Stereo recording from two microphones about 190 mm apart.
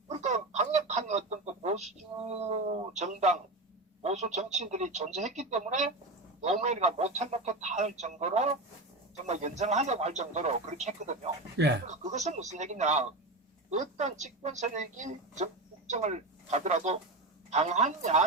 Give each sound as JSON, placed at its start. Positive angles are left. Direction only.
{"t": 0.1, "sound": "a sound", "side_deg": -40}
{"t": 4.0, "sound": "a man's voice", "side_deg": -35}
{"t": 11.5, "sound": "speech", "side_deg": -60}
{"t": 11.9, "sound": "a man's voice", "side_deg": -40}